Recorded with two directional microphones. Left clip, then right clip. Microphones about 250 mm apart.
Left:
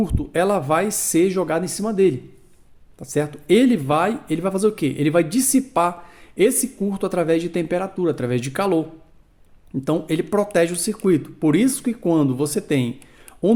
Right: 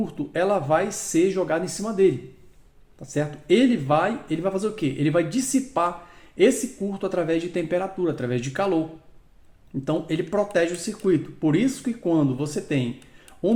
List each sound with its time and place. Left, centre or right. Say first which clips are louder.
0.0 s speech: left 4 dB; left
9.8 s speech: left 4 dB; left